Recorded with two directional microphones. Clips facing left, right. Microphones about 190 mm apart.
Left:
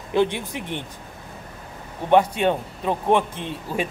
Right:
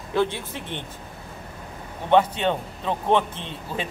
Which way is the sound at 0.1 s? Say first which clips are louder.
Left 3 dB; 15° left (ahead or behind).